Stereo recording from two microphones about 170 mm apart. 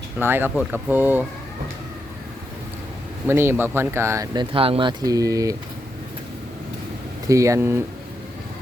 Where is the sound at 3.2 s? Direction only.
15° right (ahead or behind).